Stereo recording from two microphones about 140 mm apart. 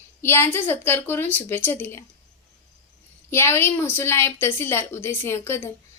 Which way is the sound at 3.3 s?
15° left (ahead or behind).